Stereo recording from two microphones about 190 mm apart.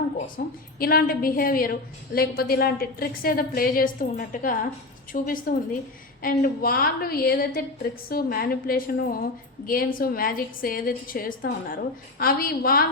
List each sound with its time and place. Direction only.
0.4 s a woman's voice: 55° left (ahead or behind)